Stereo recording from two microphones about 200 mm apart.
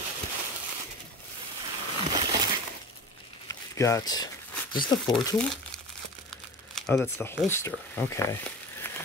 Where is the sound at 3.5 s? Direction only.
15° left (ahead or behind).